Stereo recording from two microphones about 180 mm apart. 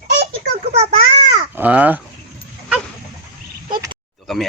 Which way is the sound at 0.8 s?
35° right (ahead or behind).